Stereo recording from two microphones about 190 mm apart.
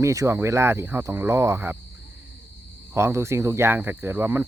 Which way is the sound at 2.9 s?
15° right (ahead or behind).